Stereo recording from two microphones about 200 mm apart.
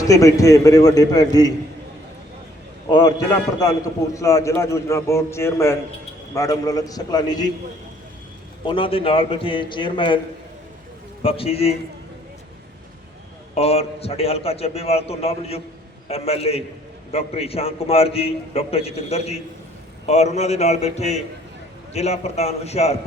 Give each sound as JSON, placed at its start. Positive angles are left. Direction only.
{"t": 0.0, "sound": "a man's voice", "side_deg": 15}
{"t": 3.6, "sound": "a man's voice", "side_deg": 15}
{"t": 8.6, "sound": "a man's voice", "side_deg": 25}
{"t": 11.2, "sound": "a man's voice", "side_deg": 30}
{"t": 13.5, "sound": "a man's voice", "side_deg": 30}